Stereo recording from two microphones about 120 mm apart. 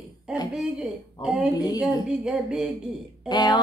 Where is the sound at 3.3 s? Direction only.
35° left (ahead or behind).